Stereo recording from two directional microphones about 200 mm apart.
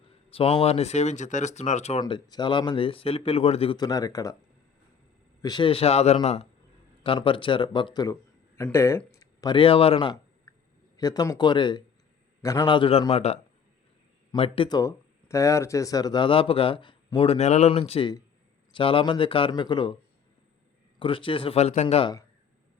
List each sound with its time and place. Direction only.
0.3 s speech: 30° left (ahead or behind)
2.0 s speech: 20° left (ahead or behind)
5.4 s speech: 20° left (ahead or behind)
10.5 s a sound: 15° left (ahead or behind)
10.9 s speech: 20° left (ahead or behind)
21.0 s speech: 25° left (ahead or behind)